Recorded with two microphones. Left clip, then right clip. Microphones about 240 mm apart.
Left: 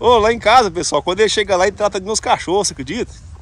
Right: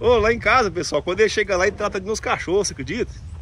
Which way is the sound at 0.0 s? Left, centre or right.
Centre.